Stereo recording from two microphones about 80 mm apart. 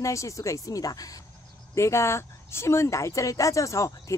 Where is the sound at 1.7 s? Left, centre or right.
Left.